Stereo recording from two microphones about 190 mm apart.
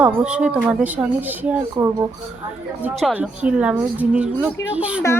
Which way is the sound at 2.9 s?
Centre (ahead or behind).